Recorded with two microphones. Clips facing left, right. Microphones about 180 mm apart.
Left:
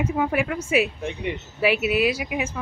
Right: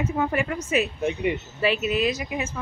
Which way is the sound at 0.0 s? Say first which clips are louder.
Left 1 dB; 10° left (ahead or behind).